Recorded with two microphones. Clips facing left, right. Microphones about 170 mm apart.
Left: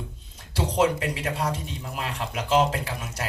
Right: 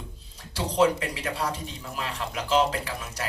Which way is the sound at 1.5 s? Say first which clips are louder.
Left 1 dB; 35° right (ahead or behind).